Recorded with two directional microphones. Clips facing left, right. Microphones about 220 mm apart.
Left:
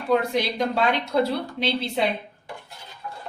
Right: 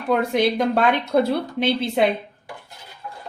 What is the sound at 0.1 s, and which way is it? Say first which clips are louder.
Speech: right 3 dB; 55° right (ahead or behind).